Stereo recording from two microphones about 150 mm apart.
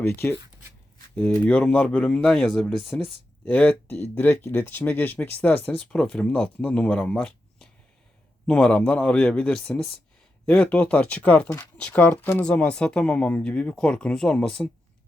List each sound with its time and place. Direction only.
0.2 s speech: 15° left (ahead or behind)
3.8 s speech: 45° left (ahead or behind)
4.1 s speech: 15° left (ahead or behind)